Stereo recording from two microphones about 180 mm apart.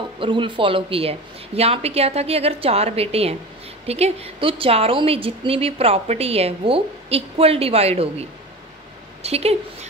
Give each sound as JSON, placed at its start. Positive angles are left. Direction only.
{"t": 0.2, "sound": "a woman's voice", "side_deg": -25}